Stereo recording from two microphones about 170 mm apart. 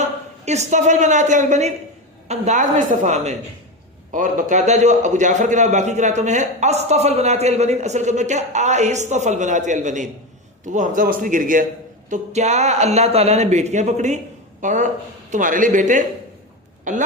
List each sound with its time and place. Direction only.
0.0 s a man's voice: 40° right (ahead or behind)